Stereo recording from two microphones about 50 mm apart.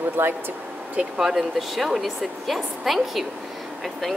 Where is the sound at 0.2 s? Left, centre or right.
Right.